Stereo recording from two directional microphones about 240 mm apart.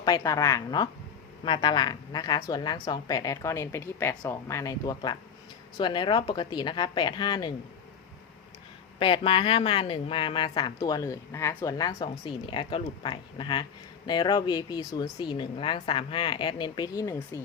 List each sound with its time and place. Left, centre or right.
0.0 s a woman's voice: centre
9.0 s speech: left